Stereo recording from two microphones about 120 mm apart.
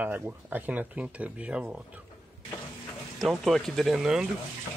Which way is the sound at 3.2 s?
Centre (ahead or behind).